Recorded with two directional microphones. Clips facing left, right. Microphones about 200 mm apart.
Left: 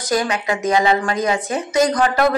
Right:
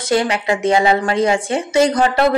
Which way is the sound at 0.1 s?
25° right (ahead or behind).